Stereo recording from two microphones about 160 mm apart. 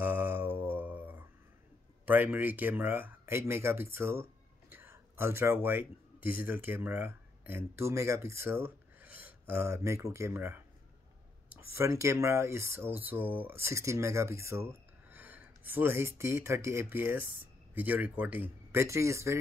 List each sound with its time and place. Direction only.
0.0 s mantra: 10° right (ahead or behind)
2.0 s speech: 10° right (ahead or behind)
11.7 s speech: 20° right (ahead or behind)